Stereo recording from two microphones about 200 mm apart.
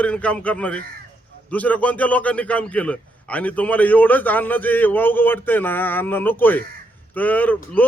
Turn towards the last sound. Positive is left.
turn(degrees=10)  # may be behind; listen again after turning